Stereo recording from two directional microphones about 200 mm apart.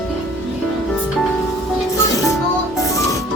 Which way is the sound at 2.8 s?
15° left (ahead or behind).